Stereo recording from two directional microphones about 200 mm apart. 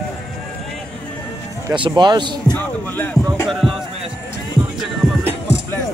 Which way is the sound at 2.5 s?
10° left (ahead or behind).